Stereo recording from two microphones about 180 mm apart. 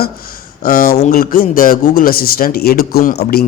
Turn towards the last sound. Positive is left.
turn(degrees=55)  # may be behind; listen again after turning